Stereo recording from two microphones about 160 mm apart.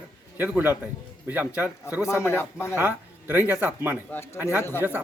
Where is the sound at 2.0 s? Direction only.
15° left (ahead or behind).